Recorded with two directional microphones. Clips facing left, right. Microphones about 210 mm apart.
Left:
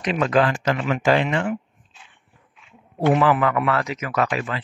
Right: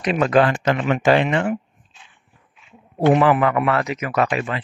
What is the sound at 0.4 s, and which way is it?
Speech, 55° right (ahead or behind).